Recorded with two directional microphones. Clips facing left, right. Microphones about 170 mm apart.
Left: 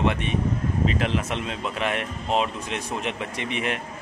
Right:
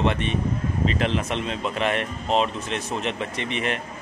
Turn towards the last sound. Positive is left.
turn(degrees=10)  # may be behind; listen again after turning